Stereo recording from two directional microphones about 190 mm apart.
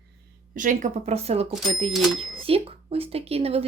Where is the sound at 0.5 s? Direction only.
45° right (ahead or behind).